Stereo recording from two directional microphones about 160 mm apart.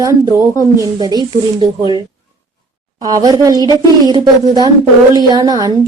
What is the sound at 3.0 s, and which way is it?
Speech, 25° right (ahead or behind).